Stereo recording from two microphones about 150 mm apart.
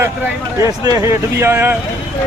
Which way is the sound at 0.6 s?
25° right (ahead or behind).